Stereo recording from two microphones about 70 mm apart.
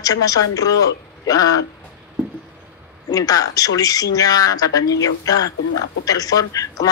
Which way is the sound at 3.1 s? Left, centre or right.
Left.